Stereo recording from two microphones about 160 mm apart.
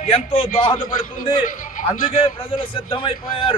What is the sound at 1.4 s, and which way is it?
Speech, 55° left (ahead or behind).